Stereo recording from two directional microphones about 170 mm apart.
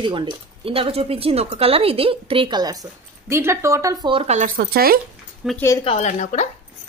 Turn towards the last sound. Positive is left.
turn(degrees=45)  # may be behind; listen again after turning